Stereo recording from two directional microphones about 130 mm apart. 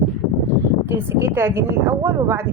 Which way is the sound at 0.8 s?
15° right (ahead or behind).